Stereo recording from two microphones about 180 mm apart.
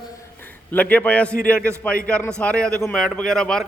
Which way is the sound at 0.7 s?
10° left (ahead or behind).